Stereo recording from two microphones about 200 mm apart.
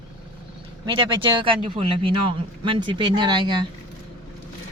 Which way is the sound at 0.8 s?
25° right (ahead or behind).